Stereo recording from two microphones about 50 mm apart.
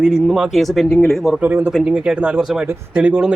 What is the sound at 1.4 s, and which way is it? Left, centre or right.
Speech, right.